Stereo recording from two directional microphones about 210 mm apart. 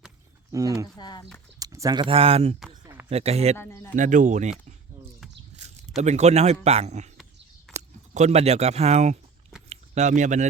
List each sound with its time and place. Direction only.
0.5 s speech: 15° right (ahead or behind)
0.9 s speech: 20° left (ahead or behind)
1.5 s speech: 15° right (ahead or behind)
3.6 s speech: 10° left (ahead or behind)
3.9 s speech: 35° right (ahead or behind)
5.5 s a sound: 30° right (ahead or behind)
6.0 s speech: 30° right (ahead or behind)
9.6 s a sound: 35° right (ahead or behind)